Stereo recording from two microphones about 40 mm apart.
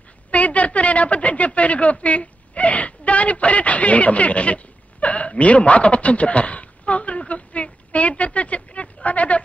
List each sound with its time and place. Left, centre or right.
0.3 s a woman's voice: left
5.0 s hiccup: left